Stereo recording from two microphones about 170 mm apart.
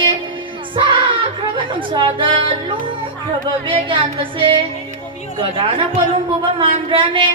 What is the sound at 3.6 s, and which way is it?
Music, 30° right (ahead or behind).